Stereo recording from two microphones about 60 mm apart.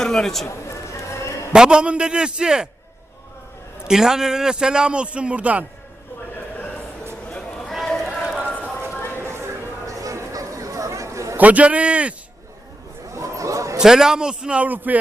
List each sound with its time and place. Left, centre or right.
0.0 s a man's voice: centre
0.4 s a sound: left
1.5 s a man's voice: centre
3.8 s a man's voice: centre
7.3 s a sound: centre
7.7 s run: centre
8.4 s clip-clop: left
9.1 s clip-clop: right
9.8 s chatter: right
11.3 s a man's voice: right
13.1 s a sound: right
13.7 s a man's voice: centre